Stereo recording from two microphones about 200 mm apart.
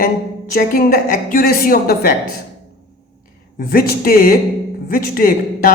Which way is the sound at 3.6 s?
45° left (ahead or behind).